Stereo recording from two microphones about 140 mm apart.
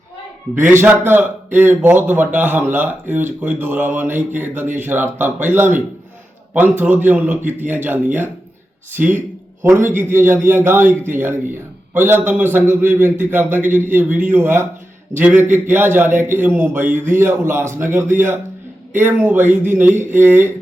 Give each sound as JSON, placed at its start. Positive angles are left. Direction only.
{"t": 0.5, "sound": "a man's voice", "side_deg": -15}
{"t": 10.0, "sound": "a man's voice", "side_deg": -15}